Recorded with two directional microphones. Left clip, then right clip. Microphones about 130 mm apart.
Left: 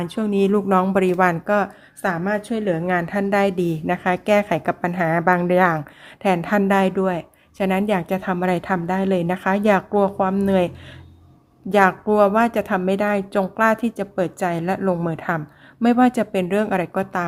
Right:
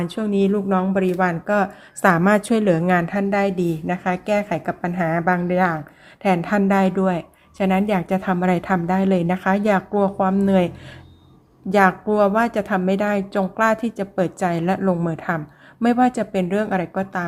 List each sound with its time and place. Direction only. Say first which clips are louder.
0.0 s speech: left 1 dB; 15° left (ahead or behind)
1.5 s a woman's voice: even; 5° left (ahead or behind)
2.0 s a woman's voice: right 6 dB; 20° right (ahead or behind)
2.6 s a woman's voice: right 3 dB; 5° right (ahead or behind); by 5.8 s 20° left (ahead or behind)
6.2 s a woman's voice: even; 10° left (ahead or behind)
11.7 s a woman's voice: even; 10° left (ahead or behind)